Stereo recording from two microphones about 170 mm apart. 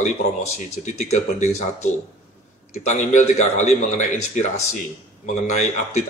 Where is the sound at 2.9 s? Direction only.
45° left (ahead or behind).